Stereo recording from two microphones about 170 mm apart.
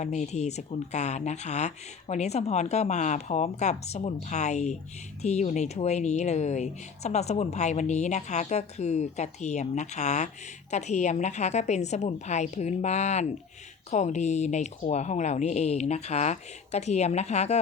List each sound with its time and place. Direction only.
0.0 s speech: 45° left (ahead or behind)